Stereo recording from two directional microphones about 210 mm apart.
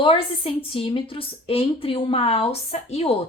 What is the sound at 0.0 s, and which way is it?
Speech, 25° left (ahead or behind).